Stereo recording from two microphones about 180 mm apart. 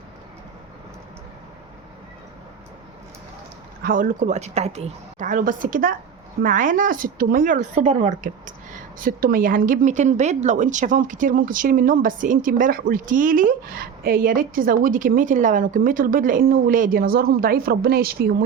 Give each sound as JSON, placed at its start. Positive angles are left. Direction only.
{"t": 3.8, "sound": "speech", "side_deg": -50}